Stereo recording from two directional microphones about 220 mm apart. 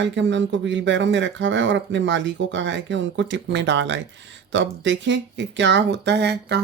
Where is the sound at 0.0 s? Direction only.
55° right (ahead or behind).